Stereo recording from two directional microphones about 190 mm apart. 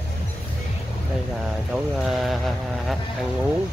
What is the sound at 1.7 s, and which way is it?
Speech, 5° right (ahead or behind).